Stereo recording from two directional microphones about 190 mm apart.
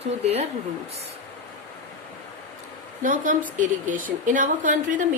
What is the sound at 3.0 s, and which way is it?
Speech, 45° right (ahead or behind).